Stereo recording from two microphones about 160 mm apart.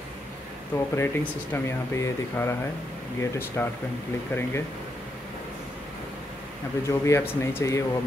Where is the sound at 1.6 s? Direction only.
15° left (ahead or behind).